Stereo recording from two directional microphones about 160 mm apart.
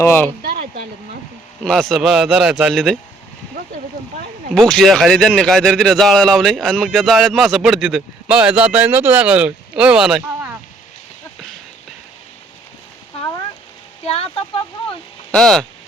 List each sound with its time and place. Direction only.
0.0 s speech: 15° left (ahead or behind)
1.6 s speech: centre (ahead or behind)
4.5 s speech: 5° left (ahead or behind)
14.0 s speech: 35° left (ahead or behind)
15.3 s speech: 5° left (ahead or behind)